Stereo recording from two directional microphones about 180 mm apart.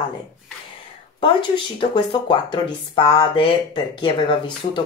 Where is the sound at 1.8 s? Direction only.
30° left (ahead or behind).